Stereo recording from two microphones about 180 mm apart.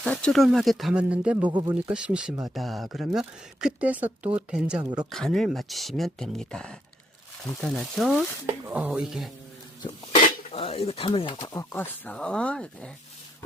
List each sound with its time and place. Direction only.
0.0 s speech: 5° left (ahead or behind)
1.5 s speech: 25° right (ahead or behind)
1.7 s speech: 5° right (ahead or behind)
10.5 s speech: 30° left (ahead or behind)
11.7 s speech: 10° left (ahead or behind)